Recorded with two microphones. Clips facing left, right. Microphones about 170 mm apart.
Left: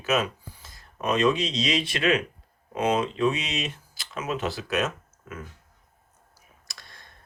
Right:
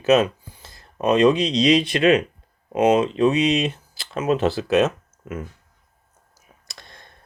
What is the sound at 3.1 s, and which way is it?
Speech, 20° right (ahead or behind).